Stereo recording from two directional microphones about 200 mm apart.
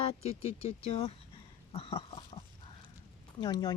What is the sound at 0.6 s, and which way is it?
Speech, 30° left (ahead or behind).